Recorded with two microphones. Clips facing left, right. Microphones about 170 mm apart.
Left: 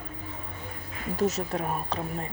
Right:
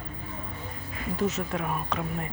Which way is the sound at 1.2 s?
40° left (ahead or behind).